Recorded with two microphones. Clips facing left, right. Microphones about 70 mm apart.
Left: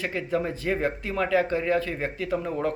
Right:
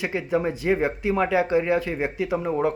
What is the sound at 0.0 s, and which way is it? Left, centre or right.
Speech, centre.